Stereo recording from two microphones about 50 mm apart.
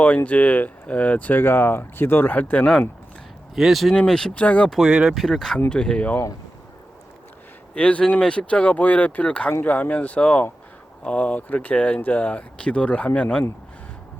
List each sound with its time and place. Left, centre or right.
0.3 s speech: left
2.4 s speech: left
3.5 s speech: centre
3.9 s speech: centre
4.4 s speech: left
4.9 s speech: right
5.1 s speech: centre
5.5 s speech: left
7.8 s speech: left